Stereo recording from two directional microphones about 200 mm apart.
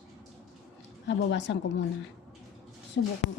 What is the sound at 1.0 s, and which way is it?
Speech, 60° left (ahead or behind).